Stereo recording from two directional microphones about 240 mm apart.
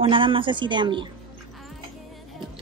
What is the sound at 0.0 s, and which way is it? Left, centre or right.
A woman's voice, right.